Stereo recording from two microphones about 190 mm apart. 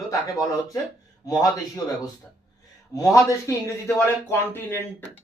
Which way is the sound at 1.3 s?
20° left (ahead or behind).